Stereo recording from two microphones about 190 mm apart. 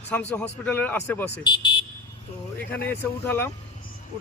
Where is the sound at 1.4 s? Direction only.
25° left (ahead or behind).